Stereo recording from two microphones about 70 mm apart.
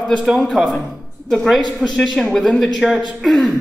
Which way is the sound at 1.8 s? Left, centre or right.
Centre.